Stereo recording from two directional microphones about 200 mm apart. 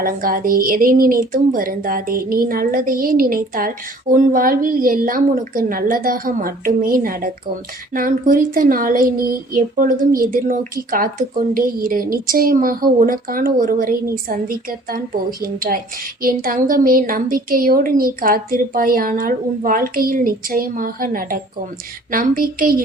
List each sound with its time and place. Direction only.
0.0 s speech: 45° right (ahead or behind)